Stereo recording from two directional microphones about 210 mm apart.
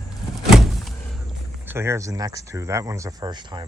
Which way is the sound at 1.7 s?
10° right (ahead or behind).